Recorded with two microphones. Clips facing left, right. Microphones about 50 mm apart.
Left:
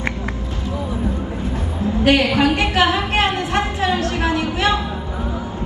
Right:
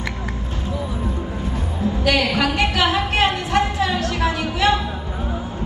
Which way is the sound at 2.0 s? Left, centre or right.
Left.